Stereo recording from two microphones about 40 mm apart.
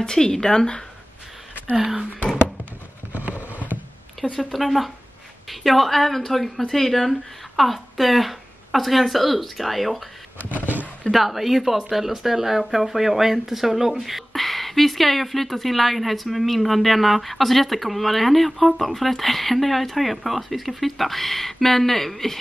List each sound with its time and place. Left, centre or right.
0.0 s speech: centre
3.1 s a sound: right
4.4 s speech: centre
11.1 s speech: centre